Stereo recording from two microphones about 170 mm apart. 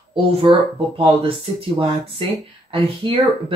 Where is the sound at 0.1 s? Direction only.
30° right (ahead or behind).